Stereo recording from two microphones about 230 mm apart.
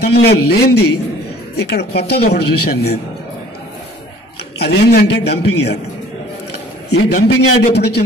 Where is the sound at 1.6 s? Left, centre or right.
Left.